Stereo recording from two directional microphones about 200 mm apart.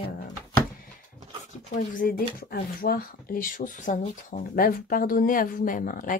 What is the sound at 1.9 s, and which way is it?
Speech, 45° left (ahead or behind).